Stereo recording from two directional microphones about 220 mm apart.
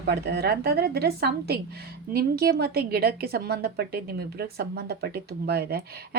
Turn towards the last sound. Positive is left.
turn(degrees=-45)  # may be behind; listen again after turning